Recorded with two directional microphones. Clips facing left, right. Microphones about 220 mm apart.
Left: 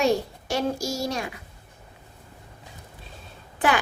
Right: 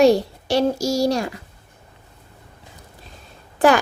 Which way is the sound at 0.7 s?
70° right (ahead or behind).